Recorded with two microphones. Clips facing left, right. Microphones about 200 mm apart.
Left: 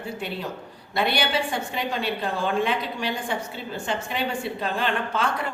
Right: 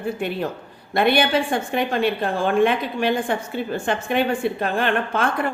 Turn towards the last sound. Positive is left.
turn(degrees=-55)  # may be behind; listen again after turning